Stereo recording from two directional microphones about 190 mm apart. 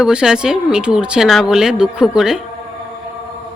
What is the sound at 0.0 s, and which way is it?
Speech, 5° right (ahead or behind).